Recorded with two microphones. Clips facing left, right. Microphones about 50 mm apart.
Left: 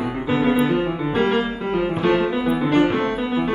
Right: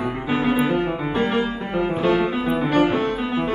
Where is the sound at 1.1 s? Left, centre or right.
Centre.